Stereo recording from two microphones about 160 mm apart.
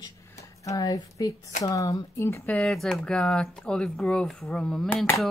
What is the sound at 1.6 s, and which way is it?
Speech, 20° left (ahead or behind).